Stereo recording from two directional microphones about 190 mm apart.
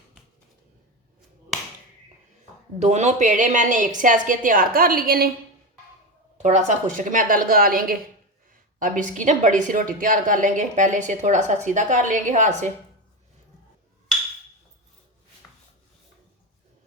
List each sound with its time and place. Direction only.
2.7 s a woman's voice: 35° right (ahead or behind); by 5.3 s 50° right (ahead or behind)
6.3 s a woman's voice: 35° right (ahead or behind)
9.1 s a woman's voice: 40° right (ahead or behind)